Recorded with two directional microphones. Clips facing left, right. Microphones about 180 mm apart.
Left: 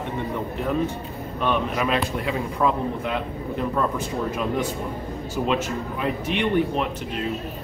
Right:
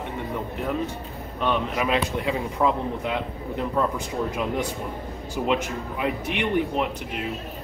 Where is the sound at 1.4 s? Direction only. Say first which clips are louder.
Left 1 dB; 20° right (ahead or behind).